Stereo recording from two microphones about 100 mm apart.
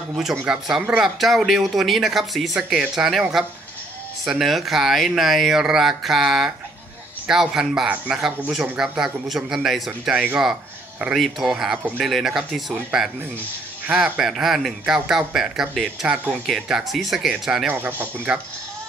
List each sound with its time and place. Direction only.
0.1 s a man's voice: 5° right (ahead or behind)
17.7 s speech: 20° right (ahead or behind)